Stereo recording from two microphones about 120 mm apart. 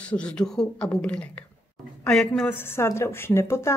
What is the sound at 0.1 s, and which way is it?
Speech, 10° left (ahead or behind).